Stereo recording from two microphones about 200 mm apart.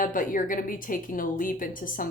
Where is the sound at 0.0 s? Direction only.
45° left (ahead or behind).